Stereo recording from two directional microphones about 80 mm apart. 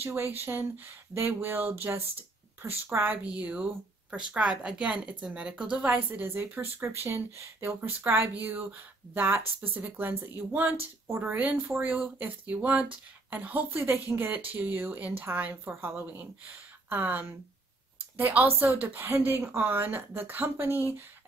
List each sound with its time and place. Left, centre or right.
0.0 s speech: right
3.3 s speech: centre